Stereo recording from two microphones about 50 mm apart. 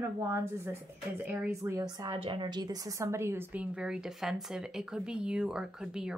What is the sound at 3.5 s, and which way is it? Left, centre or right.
Speech, right.